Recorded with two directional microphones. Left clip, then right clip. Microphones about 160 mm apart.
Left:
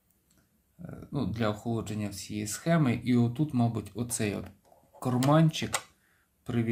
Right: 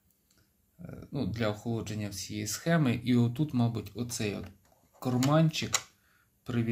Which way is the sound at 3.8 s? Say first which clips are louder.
Left 2 dB; 25° left (ahead or behind).